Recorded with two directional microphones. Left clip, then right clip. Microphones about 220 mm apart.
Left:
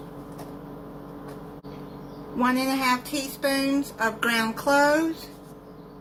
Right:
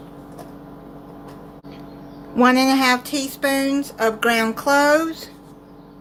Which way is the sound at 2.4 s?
40° right (ahead or behind).